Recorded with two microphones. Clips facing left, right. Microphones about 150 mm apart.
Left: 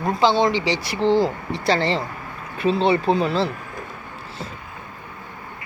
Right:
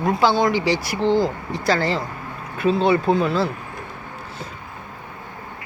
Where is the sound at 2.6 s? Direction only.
5° right (ahead or behind).